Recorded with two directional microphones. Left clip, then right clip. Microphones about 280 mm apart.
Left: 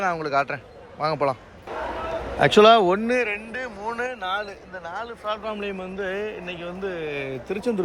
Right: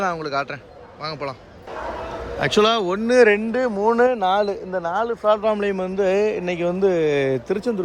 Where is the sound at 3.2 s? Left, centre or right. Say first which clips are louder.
Right 11 dB; right.